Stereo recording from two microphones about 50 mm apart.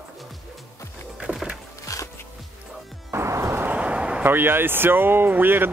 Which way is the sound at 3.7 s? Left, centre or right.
Right.